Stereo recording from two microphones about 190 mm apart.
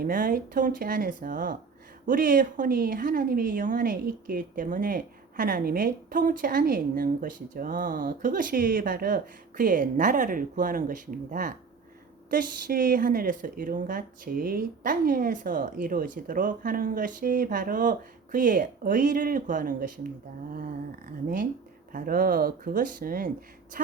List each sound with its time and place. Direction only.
0.0 s speech: 45° right (ahead or behind)
21.9 s speech: 50° right (ahead or behind)